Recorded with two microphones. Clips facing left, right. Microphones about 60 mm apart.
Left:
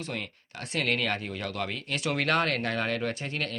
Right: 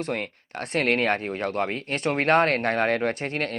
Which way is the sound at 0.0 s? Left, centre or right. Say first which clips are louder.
Right 7 dB; right.